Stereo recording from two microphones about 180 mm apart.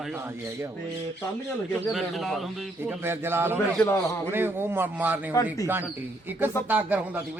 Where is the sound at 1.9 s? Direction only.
Centre (ahead or behind).